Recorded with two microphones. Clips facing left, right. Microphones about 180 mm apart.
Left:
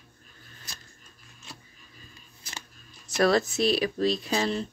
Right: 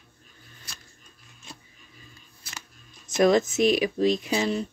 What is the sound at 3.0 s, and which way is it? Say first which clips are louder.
Speech: right 3 dB; 20° right (ahead or behind).